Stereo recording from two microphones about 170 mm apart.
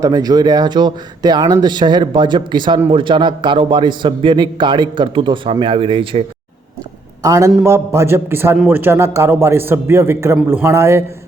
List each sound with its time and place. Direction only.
0.0 s a man's voice: 20° right (ahead or behind)
7.2 s a man's voice: 20° right (ahead or behind)